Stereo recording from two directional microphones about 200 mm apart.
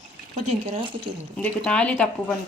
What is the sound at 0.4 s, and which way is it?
Speech, 35° right (ahead or behind).